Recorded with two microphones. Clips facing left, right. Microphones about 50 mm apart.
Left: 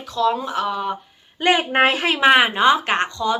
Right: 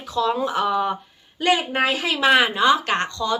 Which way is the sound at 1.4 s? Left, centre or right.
Left.